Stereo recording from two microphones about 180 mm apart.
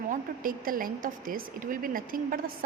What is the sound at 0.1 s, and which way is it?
A woman's voice, 50° right (ahead or behind).